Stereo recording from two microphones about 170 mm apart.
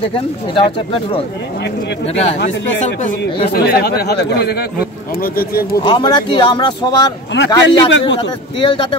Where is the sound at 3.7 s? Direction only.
65° left (ahead or behind).